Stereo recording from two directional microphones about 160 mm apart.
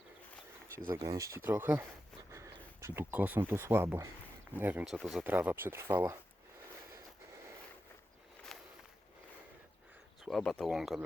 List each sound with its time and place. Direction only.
0.9 s speech: 20° right (ahead or behind); by 5.2 s centre (ahead or behind)
5.2 s speech: 10° right (ahead or behind)
8.5 s walk: 5° left (ahead or behind)
10.2 s speech: centre (ahead or behind)